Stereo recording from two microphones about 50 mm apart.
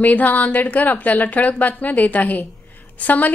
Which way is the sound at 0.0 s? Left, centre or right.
Left.